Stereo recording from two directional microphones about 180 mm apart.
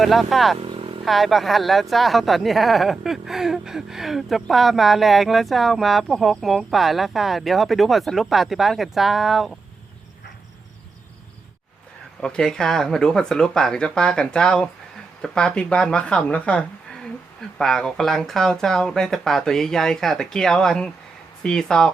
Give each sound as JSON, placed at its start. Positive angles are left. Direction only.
{"t": 0.0, "sound": "speech", "side_deg": 0}
{"t": 0.6, "sound": "vehicle", "side_deg": -30}
{"t": 1.0, "sound": "speech", "side_deg": 0}
{"t": 12.2, "sound": "speech", "side_deg": 5}